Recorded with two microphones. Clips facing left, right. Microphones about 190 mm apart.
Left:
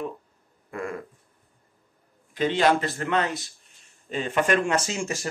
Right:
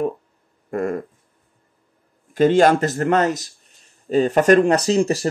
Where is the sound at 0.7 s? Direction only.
45° right (ahead or behind).